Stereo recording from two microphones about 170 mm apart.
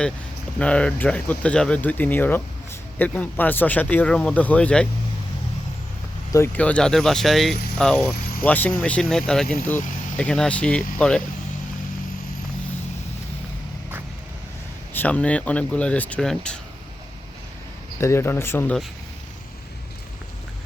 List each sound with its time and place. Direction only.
0.6 s speech: 5° left (ahead or behind)
6.3 s speech: 10° left (ahead or behind)
8.1 s vehicle: 60° left (ahead or behind)
8.4 s speech: 10° left (ahead or behind)
14.9 s speech: 10° left (ahead or behind)
18.0 s speech: 15° left (ahead or behind)